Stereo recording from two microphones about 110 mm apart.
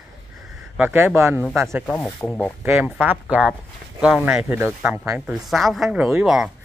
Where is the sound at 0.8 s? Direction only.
20° right (ahead or behind).